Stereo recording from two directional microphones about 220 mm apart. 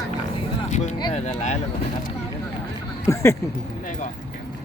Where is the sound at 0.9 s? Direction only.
20° left (ahead or behind).